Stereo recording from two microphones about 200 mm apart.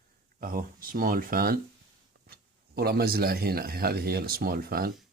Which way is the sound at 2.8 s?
50° right (ahead or behind).